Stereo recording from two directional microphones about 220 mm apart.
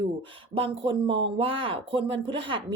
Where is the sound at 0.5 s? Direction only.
25° right (ahead or behind).